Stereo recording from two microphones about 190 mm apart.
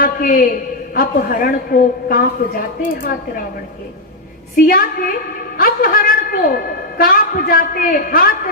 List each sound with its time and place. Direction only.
0.0 s a woman's voice: 45° left (ahead or behind)
4.5 s a woman's voice: 50° left (ahead or behind)